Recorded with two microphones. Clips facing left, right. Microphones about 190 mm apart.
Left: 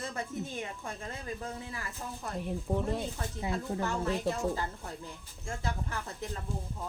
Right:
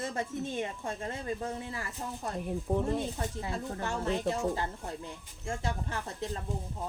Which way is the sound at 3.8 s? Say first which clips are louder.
Right 2 dB; 25° right (ahead or behind).